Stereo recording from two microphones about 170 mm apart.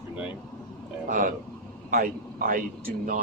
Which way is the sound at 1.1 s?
50° right (ahead or behind).